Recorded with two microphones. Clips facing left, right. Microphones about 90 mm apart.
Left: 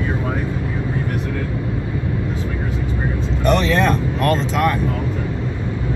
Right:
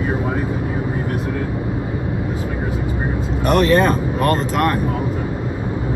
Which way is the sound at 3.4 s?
5° right (ahead or behind).